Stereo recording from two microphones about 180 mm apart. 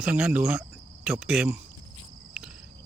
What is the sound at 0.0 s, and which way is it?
Speech, 5° right (ahead or behind).